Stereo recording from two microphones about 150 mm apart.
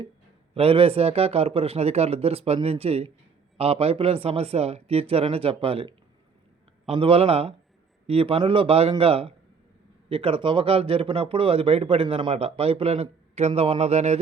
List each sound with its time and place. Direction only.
0.5 s speech: 40° right (ahead or behind)